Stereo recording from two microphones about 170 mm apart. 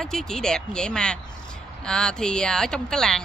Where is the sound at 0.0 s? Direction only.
5° left (ahead or behind).